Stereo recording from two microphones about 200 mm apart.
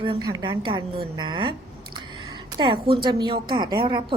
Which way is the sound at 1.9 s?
20° right (ahead or behind).